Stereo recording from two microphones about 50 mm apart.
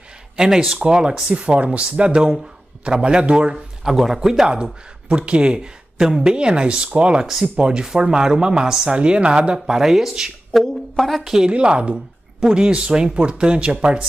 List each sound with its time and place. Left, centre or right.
0.4 s speech: centre
3.5 s speech: centre
9.8 s speech: centre
10.6 s a woman's voice: centre
11.2 s speech: centre